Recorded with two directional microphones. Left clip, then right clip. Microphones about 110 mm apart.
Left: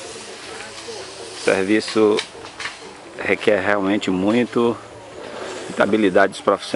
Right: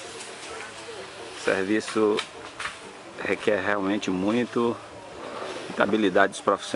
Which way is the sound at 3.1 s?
5° left (ahead or behind).